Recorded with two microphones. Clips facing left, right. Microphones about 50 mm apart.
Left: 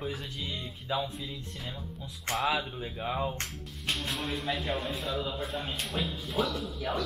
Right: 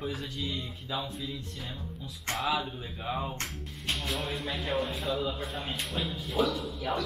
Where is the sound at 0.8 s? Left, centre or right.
Centre.